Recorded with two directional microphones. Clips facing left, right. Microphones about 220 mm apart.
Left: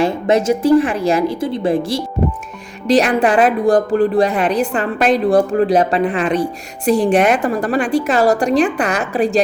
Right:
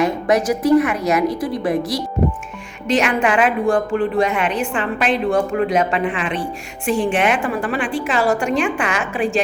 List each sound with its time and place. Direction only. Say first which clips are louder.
0.0 s a woman's voice: left 2 dB; 25° left (ahead or behind)